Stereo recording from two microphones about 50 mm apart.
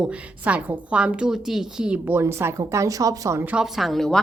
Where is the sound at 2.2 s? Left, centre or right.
Right.